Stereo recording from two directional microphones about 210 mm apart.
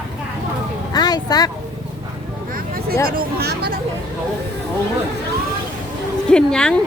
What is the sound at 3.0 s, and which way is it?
Speech, 45° right (ahead or behind).